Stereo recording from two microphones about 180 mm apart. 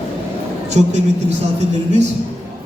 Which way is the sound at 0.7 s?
40° right (ahead or behind).